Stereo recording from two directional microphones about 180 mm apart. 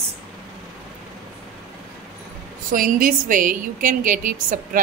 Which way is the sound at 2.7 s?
50° right (ahead or behind).